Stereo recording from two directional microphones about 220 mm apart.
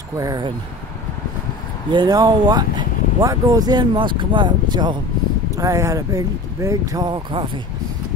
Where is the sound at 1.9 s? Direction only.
20° right (ahead or behind).